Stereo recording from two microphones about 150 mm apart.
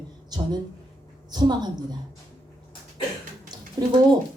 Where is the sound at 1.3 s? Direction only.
30° right (ahead or behind).